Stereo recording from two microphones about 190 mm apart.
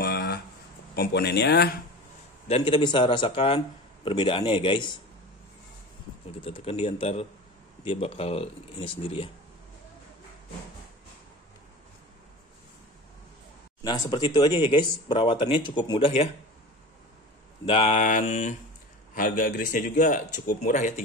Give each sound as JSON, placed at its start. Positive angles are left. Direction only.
{"t": 0.0, "sound": "a sound", "side_deg": 55}
{"t": 0.9, "sound": "speech", "side_deg": 55}
{"t": 2.4, "sound": "speech", "side_deg": 30}
{"t": 6.4, "sound": "speech", "side_deg": 30}
{"t": 13.8, "sound": "speech", "side_deg": 20}
{"t": 17.6, "sound": "speech", "side_deg": 30}